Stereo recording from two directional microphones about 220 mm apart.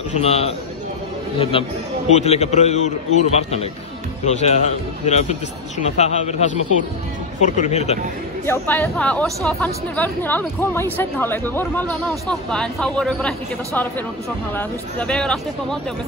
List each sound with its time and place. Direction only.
0.1 s a man's voice: 30° left (ahead or behind)
8.5 s speech: 10° left (ahead or behind)
14.5 s speech: 10° left (ahead or behind)